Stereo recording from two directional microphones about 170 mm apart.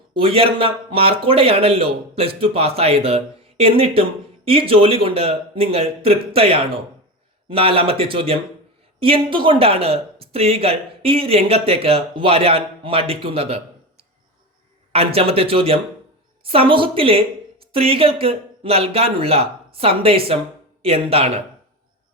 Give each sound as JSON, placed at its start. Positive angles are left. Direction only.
{"t": 0.1, "sound": "speech", "side_deg": -30}